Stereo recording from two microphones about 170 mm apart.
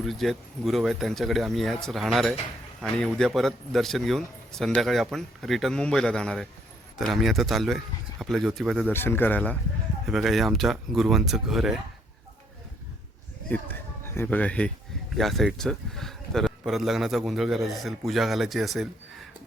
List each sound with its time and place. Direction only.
0.0 s a man's voice: centre (ahead or behind)
8.9 s a man's voice: 15° left (ahead or behind)
14.1 s a man's voice: 10° left (ahead or behind)